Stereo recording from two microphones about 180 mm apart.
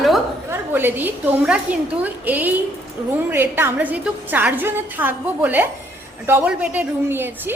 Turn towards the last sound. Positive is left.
turn(degrees=-10)  # may be behind; listen again after turning